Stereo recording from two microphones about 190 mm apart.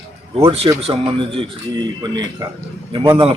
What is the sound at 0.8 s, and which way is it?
Speech, 30° right (ahead or behind).